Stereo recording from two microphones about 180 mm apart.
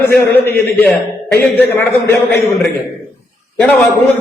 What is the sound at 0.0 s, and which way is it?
A man's voice, 15° left (ahead or behind).